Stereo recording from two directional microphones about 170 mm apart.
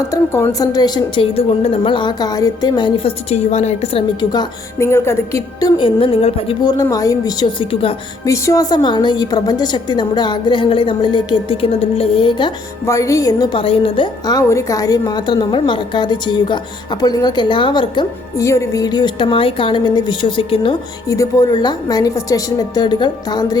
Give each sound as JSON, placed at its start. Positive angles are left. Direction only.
{"t": 0.1, "sound": "a woman's voice", "side_deg": 15}
{"t": 4.2, "sound": "a woman's voice", "side_deg": 25}
{"t": 8.2, "sound": "a woman's voice", "side_deg": 20}
{"t": 12.8, "sound": "a woman's voice", "side_deg": 15}
{"t": 21.1, "sound": "a woman's voice", "side_deg": 20}